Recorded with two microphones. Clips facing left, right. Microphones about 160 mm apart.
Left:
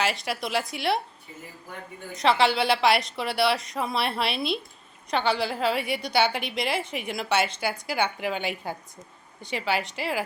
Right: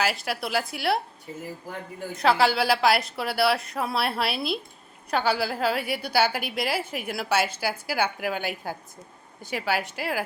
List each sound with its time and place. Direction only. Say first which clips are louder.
0.0 s a woman's voice: even; centre (ahead or behind)
2.1 s a woman's voice: even; centre (ahead or behind)